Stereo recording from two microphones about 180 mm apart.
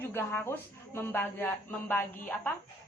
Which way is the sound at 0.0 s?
15° left (ahead or behind).